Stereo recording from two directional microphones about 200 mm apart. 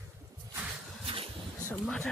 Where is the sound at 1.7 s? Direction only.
5° left (ahead or behind).